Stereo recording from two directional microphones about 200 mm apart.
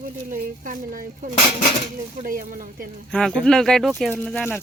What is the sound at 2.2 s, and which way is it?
Speech, 45° right (ahead or behind).